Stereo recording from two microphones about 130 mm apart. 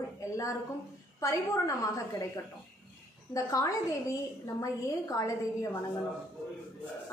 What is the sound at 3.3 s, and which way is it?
A woman's voice, 25° left (ahead or behind).